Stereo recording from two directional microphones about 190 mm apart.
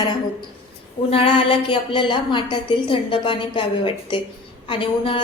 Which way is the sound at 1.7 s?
25° left (ahead or behind).